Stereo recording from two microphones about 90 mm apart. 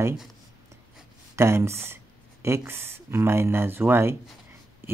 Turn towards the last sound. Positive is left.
turn(degrees=-25)  # may be behind; listen again after turning